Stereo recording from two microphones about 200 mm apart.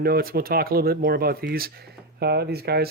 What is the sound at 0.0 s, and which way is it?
Speech, 50° right (ahead or behind).